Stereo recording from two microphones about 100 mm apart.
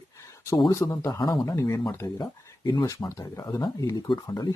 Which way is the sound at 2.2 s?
50° left (ahead or behind).